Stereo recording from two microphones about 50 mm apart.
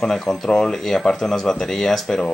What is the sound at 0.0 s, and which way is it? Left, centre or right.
Speech, centre.